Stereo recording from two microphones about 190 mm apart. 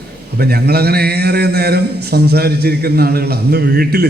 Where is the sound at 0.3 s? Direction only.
55° right (ahead or behind).